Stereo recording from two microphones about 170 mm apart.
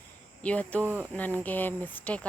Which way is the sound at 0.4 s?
10° left (ahead or behind).